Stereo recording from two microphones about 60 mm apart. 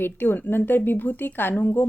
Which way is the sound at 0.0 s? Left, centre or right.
Left.